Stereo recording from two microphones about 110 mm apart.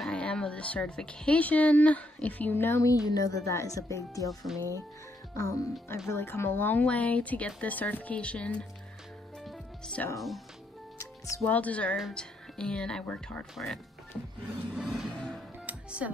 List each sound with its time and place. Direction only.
0.0 s speech: 10° left (ahead or behind)
3.1 s speech: 35° left (ahead or behind)
5.3 s speech: 25° left (ahead or behind)
9.4 s music: centre (ahead or behind)
10.1 s speech: centre (ahead or behind)
11.0 s music: 30° left (ahead or behind)
11.4 s speech: 15° left (ahead or behind)
14.7 s music: 5° right (ahead or behind)
15.6 s music: 10° right (ahead or behind)